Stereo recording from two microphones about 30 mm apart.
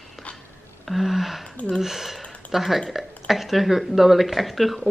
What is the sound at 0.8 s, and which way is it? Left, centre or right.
Speech, centre.